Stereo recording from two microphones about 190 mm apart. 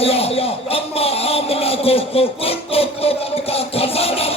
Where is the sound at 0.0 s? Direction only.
30° left (ahead or behind).